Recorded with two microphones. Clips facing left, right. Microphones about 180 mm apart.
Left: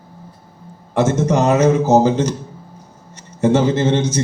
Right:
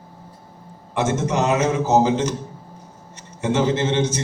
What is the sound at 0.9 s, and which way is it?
A man's voice, 40° left (ahead or behind).